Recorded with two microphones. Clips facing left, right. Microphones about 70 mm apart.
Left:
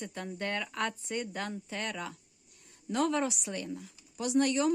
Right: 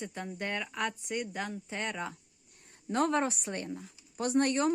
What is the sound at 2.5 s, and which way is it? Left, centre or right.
A woman's voice, right.